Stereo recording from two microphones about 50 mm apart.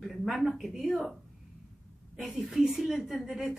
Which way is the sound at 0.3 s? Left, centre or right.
Centre.